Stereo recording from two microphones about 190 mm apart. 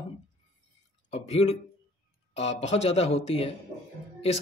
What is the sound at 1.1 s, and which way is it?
A man's voice, 35° left (ahead or behind).